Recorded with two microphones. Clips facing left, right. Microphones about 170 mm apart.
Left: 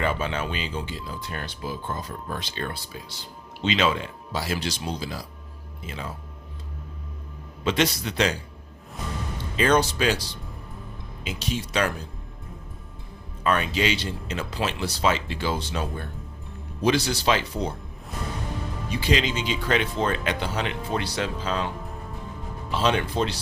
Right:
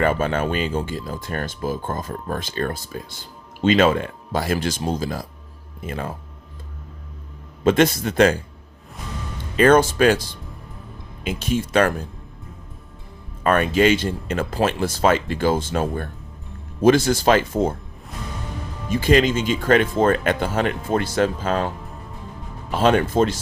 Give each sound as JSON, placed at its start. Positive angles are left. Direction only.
{"t": 0.0, "sound": "speech", "side_deg": -50}
{"t": 7.6, "sound": "speech", "side_deg": -50}
{"t": 9.6, "sound": "speech", "side_deg": -50}
{"t": 13.4, "sound": "speech", "side_deg": -50}
{"t": 18.9, "sound": "speech", "side_deg": -50}
{"t": 22.7, "sound": "speech", "side_deg": -50}